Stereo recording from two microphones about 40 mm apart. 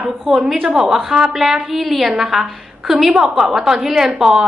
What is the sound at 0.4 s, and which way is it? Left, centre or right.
A woman's voice, centre.